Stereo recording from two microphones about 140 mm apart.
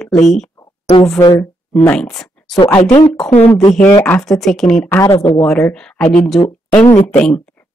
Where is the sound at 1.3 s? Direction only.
15° left (ahead or behind).